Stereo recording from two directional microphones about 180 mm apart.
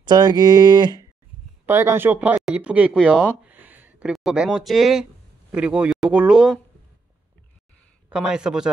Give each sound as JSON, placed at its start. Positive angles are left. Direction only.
{"t": 0.0, "sound": "speech", "side_deg": -25}
{"t": 1.7, "sound": "speech", "side_deg": -15}
{"t": 8.1, "sound": "speech", "side_deg": -5}